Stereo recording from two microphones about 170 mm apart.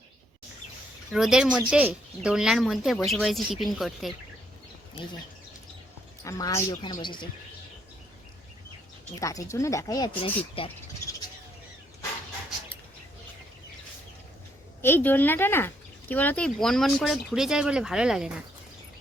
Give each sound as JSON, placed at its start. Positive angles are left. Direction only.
{"t": 1.1, "sound": "speech", "side_deg": 0}
{"t": 6.2, "sound": "speech", "side_deg": 20}
{"t": 9.2, "sound": "speech", "side_deg": 20}
{"t": 14.8, "sound": "speech", "side_deg": 15}